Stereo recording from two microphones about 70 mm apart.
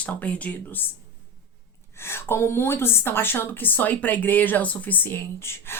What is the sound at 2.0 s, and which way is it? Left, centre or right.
Speech, left.